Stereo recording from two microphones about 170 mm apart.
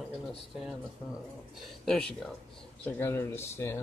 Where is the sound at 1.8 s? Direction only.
5° left (ahead or behind).